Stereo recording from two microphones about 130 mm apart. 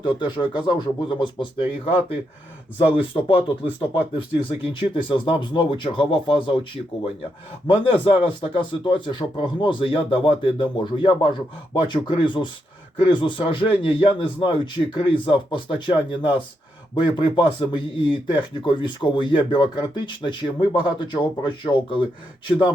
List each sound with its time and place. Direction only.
0.0 s a man's voice: 35° left (ahead or behind)
7.7 s a man's voice: 45° left (ahead or behind)